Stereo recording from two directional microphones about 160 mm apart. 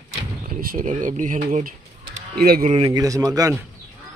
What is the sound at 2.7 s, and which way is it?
Speech, 30° right (ahead or behind).